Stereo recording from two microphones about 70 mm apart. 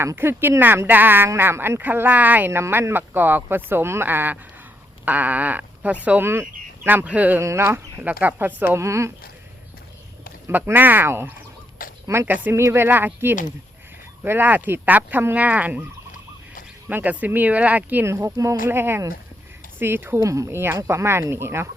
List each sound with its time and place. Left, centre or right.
0.0 s speech: right
2.5 s speech: right
7.4 s speech: right
7.9 s speech: right
8.8 s speech: right
10.4 s speech: right
16.9 s speech: right
18.0 s speech: right
20.1 s speech: right
20.8 s speech: right